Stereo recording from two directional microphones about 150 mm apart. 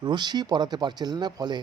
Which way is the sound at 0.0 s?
30° right (ahead or behind).